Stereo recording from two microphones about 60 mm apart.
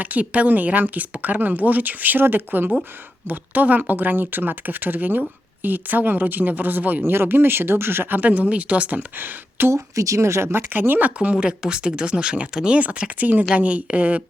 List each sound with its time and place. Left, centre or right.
0.0 s speech: right
8.2 s speech: right
9.0 s speech: right
9.7 s speech: right
11.2 s speech: centre